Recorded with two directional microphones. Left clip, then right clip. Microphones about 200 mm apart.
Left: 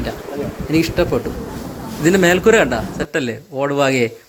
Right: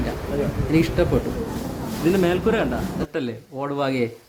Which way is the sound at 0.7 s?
5° left (ahead or behind).